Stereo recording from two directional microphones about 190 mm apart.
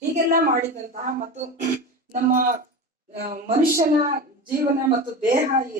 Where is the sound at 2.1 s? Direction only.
45° right (ahead or behind).